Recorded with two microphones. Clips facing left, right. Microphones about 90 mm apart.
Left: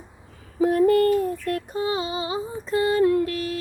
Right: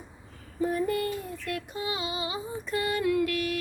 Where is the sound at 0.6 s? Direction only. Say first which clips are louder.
Left 10 dB; 65° left (ahead or behind).